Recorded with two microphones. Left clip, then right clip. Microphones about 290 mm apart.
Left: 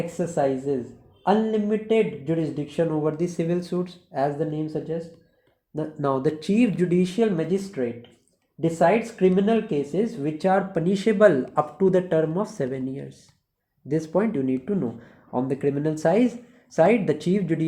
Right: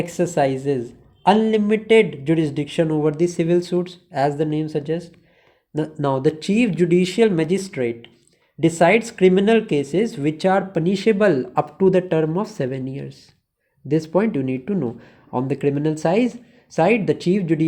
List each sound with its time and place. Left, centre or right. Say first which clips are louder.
0.0 s speech: right 5 dB; right; by 17.7 s centre